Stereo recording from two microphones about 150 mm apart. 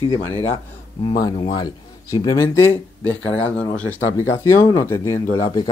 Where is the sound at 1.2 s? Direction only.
30° left (ahead or behind); by 4.3 s 10° left (ahead or behind).